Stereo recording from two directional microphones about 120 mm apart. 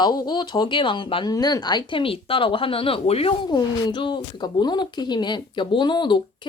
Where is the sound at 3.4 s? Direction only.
40° left (ahead or behind).